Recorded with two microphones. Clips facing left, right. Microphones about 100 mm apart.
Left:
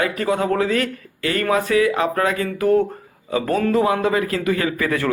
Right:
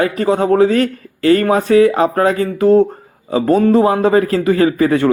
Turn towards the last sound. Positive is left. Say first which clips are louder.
# right 9 dB
turn(degrees=-30)  # may be behind; listen again after turning